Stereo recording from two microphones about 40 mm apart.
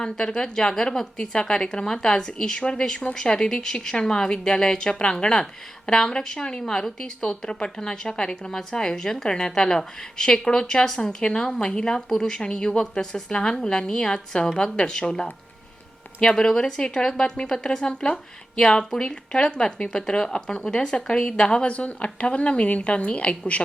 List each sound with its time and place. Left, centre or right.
0.0 s a woman's voice: left